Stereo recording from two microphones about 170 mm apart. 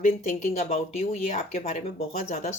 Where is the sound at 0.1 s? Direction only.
45° left (ahead or behind).